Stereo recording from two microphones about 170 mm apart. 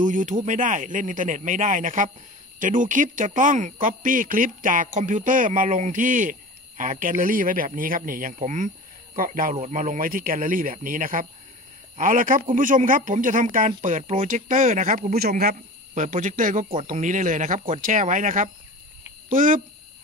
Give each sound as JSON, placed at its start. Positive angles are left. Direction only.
{"t": 0.0, "sound": "speech", "side_deg": -50}